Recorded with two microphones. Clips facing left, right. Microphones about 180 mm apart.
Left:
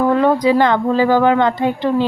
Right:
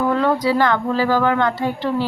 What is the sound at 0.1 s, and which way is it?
Speech, 20° left (ahead or behind).